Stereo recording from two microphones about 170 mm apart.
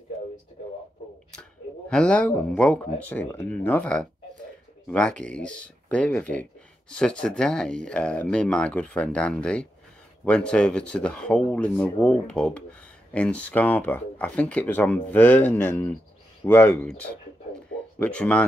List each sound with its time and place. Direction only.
1.9 s speech: 5° left (ahead or behind)
17.9 s speech: 10° left (ahead or behind)